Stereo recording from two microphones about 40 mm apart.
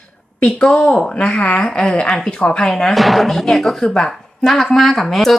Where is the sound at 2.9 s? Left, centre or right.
Centre.